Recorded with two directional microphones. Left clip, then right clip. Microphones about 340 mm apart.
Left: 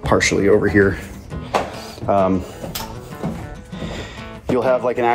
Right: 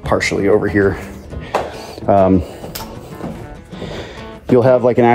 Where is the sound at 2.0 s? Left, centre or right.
Right.